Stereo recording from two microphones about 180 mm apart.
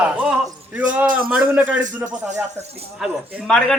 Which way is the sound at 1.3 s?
5° right (ahead or behind).